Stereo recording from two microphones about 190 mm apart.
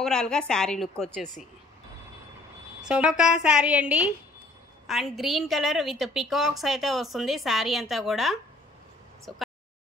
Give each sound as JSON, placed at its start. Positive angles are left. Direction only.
{"t": 0.0, "sound": "a woman's voice", "side_deg": 5}
{"t": 2.8, "sound": "a woman's voice", "side_deg": -5}